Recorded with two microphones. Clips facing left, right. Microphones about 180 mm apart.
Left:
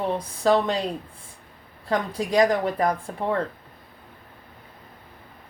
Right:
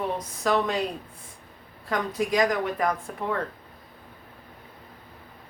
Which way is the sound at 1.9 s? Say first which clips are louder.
Left 3 dB; 30° left (ahead or behind).